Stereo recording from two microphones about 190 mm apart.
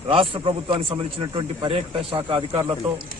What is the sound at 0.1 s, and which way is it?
A man's voice, 25° right (ahead or behind).